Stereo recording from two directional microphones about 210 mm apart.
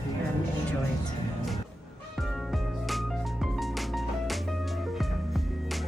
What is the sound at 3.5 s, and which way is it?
Music, centre (ahead or behind).